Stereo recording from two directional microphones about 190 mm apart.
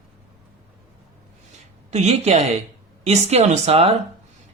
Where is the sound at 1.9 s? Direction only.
35° right (ahead or behind).